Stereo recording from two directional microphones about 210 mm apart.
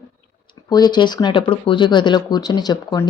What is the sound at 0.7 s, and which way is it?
Speech, 20° left (ahead or behind).